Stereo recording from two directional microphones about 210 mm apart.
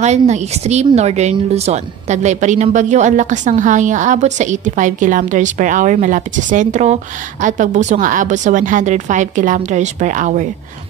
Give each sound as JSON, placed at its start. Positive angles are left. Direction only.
{"t": 0.0, "sound": "speech", "side_deg": -35}